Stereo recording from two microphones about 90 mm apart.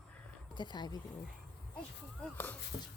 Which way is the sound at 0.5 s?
55° left (ahead or behind).